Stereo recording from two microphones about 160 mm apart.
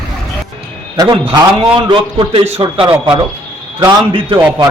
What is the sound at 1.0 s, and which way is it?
A man's voice, 25° right (ahead or behind).